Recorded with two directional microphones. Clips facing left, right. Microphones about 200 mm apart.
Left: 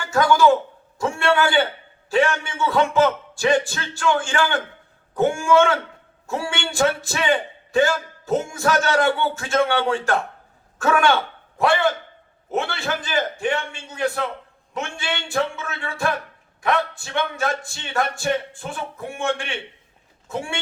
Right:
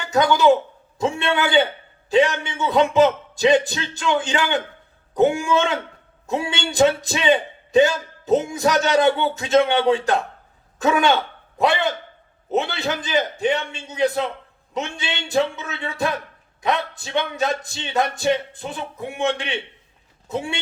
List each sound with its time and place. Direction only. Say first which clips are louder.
0.0 s a man's voice: even; 20° right (ahead or behind)